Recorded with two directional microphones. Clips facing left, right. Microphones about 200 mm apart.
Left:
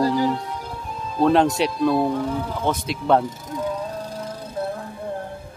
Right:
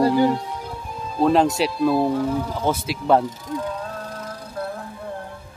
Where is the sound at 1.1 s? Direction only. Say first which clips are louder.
Even; centre (ahead or behind).